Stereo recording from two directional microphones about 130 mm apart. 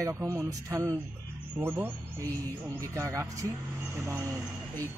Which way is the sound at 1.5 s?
15° right (ahead or behind).